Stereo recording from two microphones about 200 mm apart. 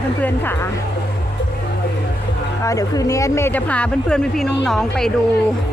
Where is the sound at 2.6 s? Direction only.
15° left (ahead or behind); by 5.1 s centre (ahead or behind).